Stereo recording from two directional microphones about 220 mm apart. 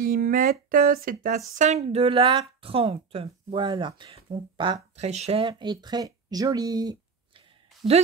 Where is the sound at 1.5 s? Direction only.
30° right (ahead or behind).